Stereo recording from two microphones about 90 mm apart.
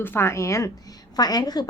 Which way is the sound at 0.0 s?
25° left (ahead or behind).